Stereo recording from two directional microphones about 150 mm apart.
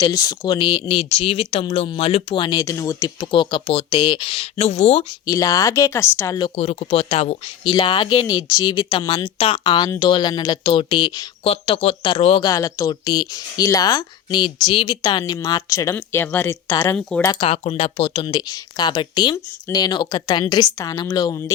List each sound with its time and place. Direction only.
0.0 s speech: 25° left (ahead or behind)
3.2 s speech: 35° left (ahead or behind)
5.2 s speech: 20° left (ahead or behind)
6.6 s speech: 40° left (ahead or behind)
11.4 s speech: 40° left (ahead or behind)
12.5 s speech: 25° left (ahead or behind)
17.3 s speech: 40° left (ahead or behind); by 21.5 s 25° left (ahead or behind)